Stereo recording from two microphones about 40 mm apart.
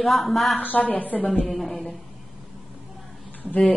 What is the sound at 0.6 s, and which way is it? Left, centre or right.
Speech, left.